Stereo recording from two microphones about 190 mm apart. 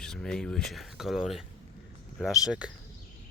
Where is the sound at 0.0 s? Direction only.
5° left (ahead or behind).